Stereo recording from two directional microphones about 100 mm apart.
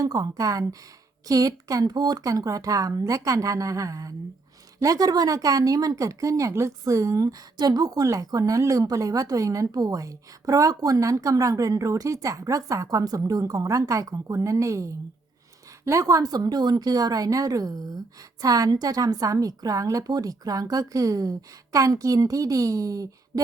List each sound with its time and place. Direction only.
0.0 s speech: 35° right (ahead or behind)